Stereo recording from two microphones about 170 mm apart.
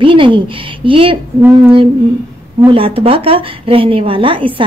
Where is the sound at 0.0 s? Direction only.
30° right (ahead or behind).